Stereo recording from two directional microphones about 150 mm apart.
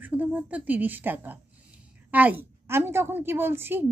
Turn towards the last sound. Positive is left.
turn(degrees=-15)  # may be behind; listen again after turning